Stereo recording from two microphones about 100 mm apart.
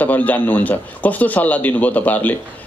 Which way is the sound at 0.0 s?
15° left (ahead or behind).